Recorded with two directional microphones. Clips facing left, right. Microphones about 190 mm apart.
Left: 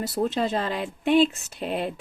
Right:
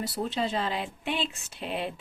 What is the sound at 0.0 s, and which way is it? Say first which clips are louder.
Speech: left 5 dB; 45° left (ahead or behind).